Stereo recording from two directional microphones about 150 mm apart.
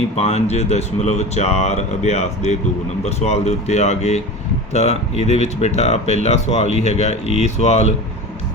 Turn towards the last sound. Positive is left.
turn(degrees=50)  # may be behind; listen again after turning